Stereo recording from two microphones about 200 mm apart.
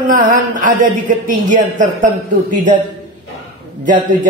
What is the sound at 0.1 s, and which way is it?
A man's voice, 40° right (ahead or behind).